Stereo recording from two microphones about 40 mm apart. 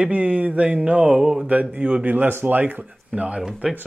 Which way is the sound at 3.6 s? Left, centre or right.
Right.